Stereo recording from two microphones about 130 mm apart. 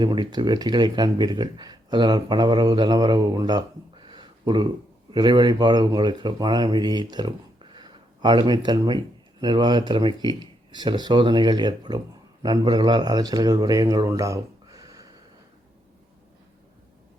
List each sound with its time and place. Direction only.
0.0 s speech: 35° right (ahead or behind)